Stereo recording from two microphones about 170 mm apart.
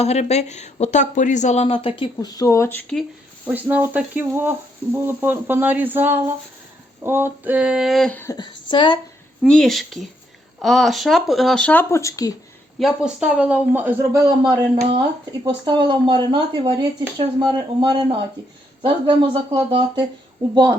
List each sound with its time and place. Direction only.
0.0 s speech: 40° left (ahead or behind); by 2.8 s 15° left (ahead or behind)
3.4 s speech: 10° right (ahead or behind)
8.2 s a woman's voice: 20° left (ahead or behind)
9.4 s speech: centre (ahead or behind); by 12.4 s 20° left (ahead or behind)
12.8 s speech: 5° right (ahead or behind); by 20.1 s 30° right (ahead or behind)